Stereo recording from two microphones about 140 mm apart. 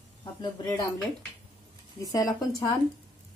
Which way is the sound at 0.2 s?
30° left (ahead or behind).